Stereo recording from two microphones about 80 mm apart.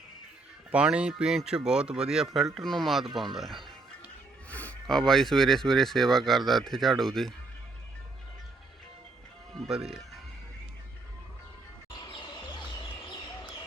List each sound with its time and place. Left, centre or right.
0.7 s speech: centre
2.6 s speech: centre
4.4 s a sound: centre
4.9 s speech: centre
9.6 s speech: centre
11.9 s music: left